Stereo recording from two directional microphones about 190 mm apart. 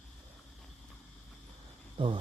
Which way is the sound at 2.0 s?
25° right (ahead or behind).